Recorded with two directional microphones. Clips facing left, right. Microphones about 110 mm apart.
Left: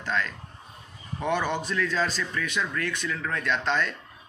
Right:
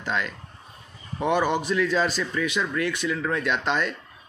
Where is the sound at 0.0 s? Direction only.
15° right (ahead or behind).